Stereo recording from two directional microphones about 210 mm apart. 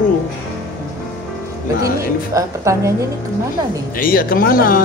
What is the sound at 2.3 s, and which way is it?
Speech, 15° right (ahead or behind).